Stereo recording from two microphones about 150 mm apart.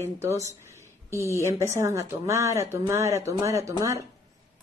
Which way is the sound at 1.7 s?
20° right (ahead or behind).